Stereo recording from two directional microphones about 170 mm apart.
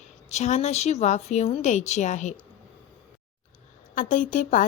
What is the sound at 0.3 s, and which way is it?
Speech, 40° left (ahead or behind).